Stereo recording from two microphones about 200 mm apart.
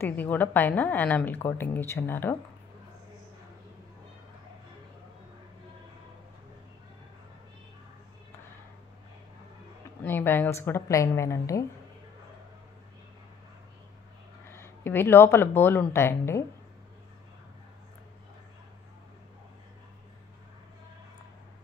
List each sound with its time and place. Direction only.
0.0 s a woman's voice: 10° left (ahead or behind)
10.0 s a woman's voice: 10° left (ahead or behind)
14.5 s a woman's voice: 10° left (ahead or behind)